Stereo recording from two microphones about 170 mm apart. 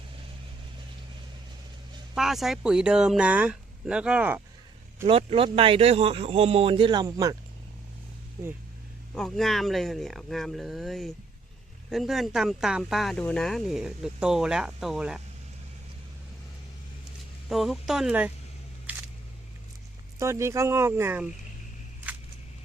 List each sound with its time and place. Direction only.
2.1 s speech: centre (ahead or behind)
5.0 s speech: 30° right (ahead or behind)
9.1 s speech: 5° left (ahead or behind)
17.5 s speech: centre (ahead or behind)
18.9 s single-lens reflex camera: 10° right (ahead or behind)
20.1 s speech: 15° right (ahead or behind)